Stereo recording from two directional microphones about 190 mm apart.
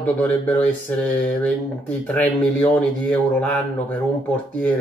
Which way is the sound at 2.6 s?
5° left (ahead or behind).